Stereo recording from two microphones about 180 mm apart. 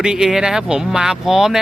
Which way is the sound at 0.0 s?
5° right (ahead or behind).